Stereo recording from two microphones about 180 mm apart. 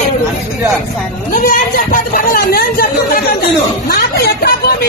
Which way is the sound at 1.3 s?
50° left (ahead or behind).